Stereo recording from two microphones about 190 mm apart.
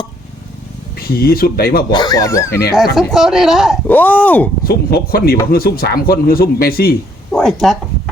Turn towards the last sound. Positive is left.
turn(degrees=0)  # may be behind; listen again after turning